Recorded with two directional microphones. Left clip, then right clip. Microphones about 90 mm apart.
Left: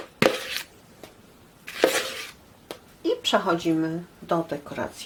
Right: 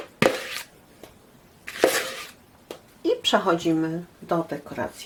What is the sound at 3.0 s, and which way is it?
Speech, 5° right (ahead or behind).